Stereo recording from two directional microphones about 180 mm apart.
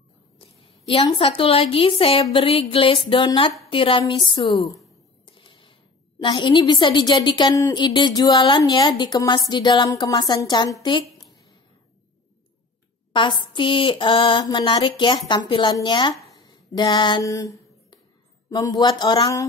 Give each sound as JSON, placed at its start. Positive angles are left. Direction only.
{"t": 0.4, "sound": "a woman's voice", "side_deg": 30}
{"t": 13.1, "sound": "a woman's voice", "side_deg": 25}
{"t": 16.3, "sound": "a sound", "side_deg": 25}
{"t": 18.5, "sound": "a woman's voice", "side_deg": 20}